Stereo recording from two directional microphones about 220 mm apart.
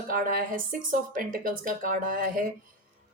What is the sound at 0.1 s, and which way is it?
A woman's voice, 40° right (ahead or behind).